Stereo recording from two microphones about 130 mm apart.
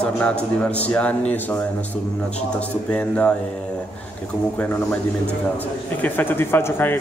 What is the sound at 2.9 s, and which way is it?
Speech, 10° left (ahead or behind).